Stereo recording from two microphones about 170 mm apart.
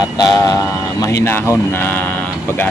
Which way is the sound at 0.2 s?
20° left (ahead or behind).